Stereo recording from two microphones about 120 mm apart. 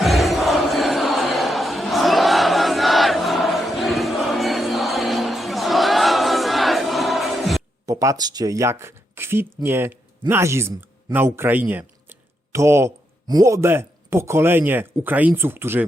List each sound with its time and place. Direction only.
0.0 s crowd: centre (ahead or behind)
7.9 s speech: 30° right (ahead or behind)